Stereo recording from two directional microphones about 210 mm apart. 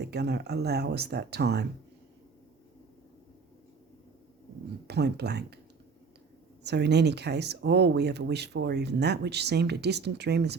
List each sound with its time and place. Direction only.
0.0 s speech: 50° right (ahead or behind)
4.9 s speech: 50° right (ahead or behind)
6.6 s speech: 55° right (ahead or behind)